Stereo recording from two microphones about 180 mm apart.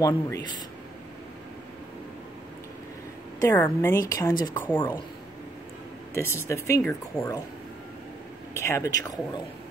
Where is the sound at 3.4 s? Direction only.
15° left (ahead or behind).